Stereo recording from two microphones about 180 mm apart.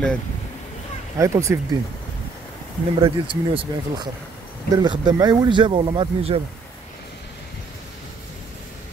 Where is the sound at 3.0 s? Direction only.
30° right (ahead or behind).